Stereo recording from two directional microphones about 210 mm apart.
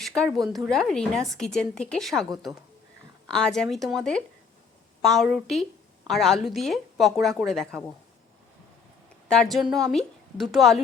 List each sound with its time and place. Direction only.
0.0 s a woman's voice: centre (ahead or behind)
3.2 s a woman's voice: centre (ahead or behind)
9.3 s a woman's voice: centre (ahead or behind)